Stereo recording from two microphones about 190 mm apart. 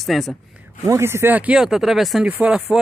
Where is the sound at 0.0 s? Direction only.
Centre (ahead or behind).